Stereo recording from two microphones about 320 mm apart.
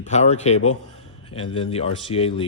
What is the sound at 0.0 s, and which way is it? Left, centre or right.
Speech, left.